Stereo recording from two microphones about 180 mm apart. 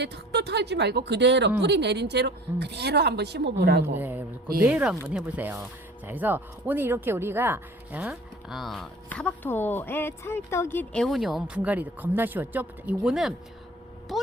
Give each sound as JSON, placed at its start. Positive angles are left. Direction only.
{"t": 0.0, "sound": "speech", "side_deg": -70}
{"t": 3.9, "sound": "speech", "side_deg": -10}